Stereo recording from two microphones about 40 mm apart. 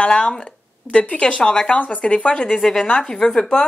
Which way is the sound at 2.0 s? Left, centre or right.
Left.